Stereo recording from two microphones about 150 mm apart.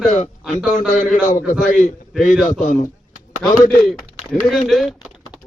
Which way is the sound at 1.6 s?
60° left (ahead or behind).